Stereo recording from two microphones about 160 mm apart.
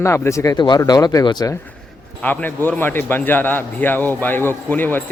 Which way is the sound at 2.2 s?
10° left (ahead or behind).